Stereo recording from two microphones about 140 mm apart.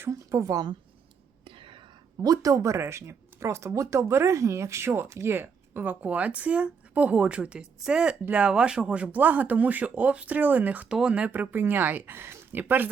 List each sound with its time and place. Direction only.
0.0 s speech: 20° right (ahead or behind)
1.5 s whispering: 35° right (ahead or behind)
2.2 s speech: 25° right (ahead or behind)